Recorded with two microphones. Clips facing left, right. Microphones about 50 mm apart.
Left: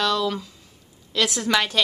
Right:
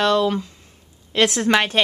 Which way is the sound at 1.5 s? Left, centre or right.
Right.